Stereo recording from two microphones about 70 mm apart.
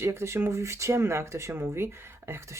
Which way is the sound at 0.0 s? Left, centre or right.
Right.